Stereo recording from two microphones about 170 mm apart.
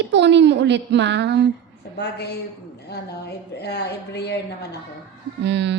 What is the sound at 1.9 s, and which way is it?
Speech, 85° left.